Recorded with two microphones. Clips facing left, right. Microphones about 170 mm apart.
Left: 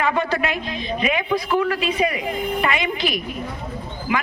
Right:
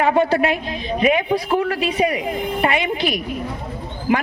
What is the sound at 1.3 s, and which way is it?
Speech, 35° right (ahead or behind).